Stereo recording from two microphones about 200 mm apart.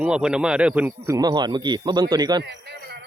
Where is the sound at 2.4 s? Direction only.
55° right (ahead or behind).